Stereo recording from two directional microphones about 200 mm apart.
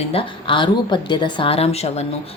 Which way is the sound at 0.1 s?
25° left (ahead or behind).